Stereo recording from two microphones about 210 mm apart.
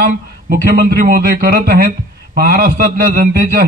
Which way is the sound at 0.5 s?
45° right (ahead or behind).